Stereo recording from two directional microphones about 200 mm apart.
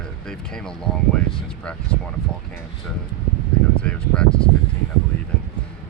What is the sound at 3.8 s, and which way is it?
Speech, 5° left (ahead or behind).